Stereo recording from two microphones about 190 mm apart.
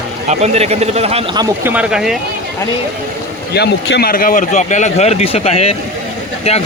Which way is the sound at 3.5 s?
60° left (ahead or behind).